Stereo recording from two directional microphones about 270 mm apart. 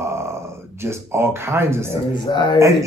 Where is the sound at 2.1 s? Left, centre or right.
Centre.